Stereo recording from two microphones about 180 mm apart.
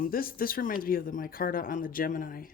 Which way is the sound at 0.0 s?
55° left (ahead or behind).